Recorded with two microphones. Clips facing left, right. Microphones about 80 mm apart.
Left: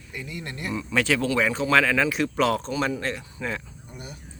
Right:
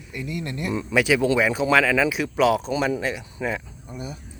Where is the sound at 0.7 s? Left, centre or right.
Right.